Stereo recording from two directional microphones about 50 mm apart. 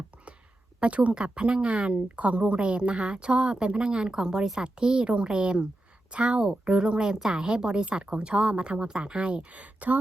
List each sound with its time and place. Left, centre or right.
0.8 s speech: right